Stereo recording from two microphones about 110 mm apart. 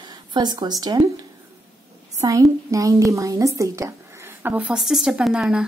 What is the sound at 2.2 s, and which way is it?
A woman's voice, 30° right (ahead or behind).